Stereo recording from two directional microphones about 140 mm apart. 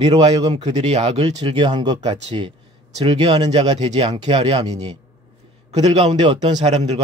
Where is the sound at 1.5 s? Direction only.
35° right (ahead or behind).